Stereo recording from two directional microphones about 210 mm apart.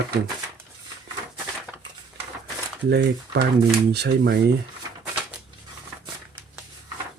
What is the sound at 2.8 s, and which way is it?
Speech, 50° right (ahead or behind).